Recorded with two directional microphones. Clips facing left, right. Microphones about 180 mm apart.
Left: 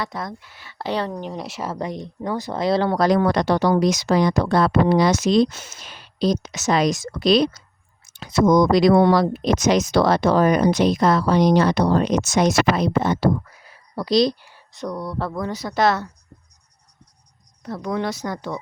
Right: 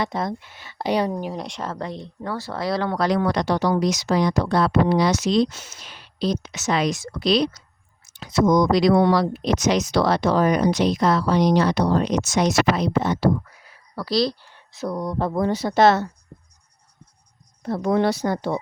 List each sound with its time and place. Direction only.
0.0 s speech: 25° right (ahead or behind)
1.3 s speech: 5° left (ahead or behind); by 13.3 s 50° left (ahead or behind)
13.9 s speech: 20° left (ahead or behind)
14.5 s a sound: centre (ahead or behind)
14.9 s speech: 20° right (ahead or behind)
15.3 s speech: 30° right (ahead or behind)
17.7 s speech: 30° right (ahead or behind)